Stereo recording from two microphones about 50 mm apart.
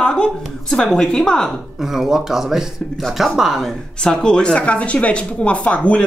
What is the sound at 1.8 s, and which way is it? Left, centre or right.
Speech, centre.